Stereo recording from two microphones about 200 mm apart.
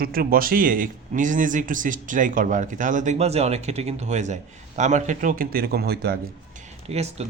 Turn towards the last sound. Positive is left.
turn(degrees=-30)  # may be behind; listen again after turning